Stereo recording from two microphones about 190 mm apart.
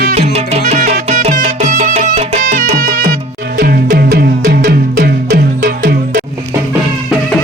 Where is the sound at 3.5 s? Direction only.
55° right (ahead or behind).